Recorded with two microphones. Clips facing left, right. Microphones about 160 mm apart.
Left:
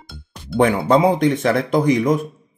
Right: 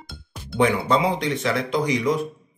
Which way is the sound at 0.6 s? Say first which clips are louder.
Left 5 dB; 50° left (ahead or behind).